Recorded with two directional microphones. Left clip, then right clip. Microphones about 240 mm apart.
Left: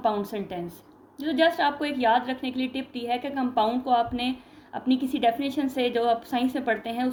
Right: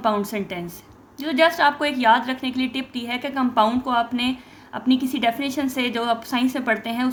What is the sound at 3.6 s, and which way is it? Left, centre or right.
Speech, right.